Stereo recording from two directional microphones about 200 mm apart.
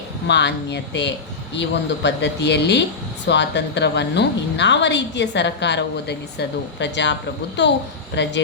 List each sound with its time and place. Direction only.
0.3 s a woman's voice: 60° left (ahead or behind)